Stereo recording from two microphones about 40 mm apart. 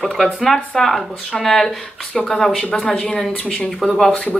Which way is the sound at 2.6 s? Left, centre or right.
Left.